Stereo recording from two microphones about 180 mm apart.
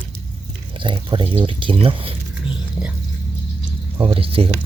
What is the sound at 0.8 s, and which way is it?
Speech, 25° right (ahead or behind).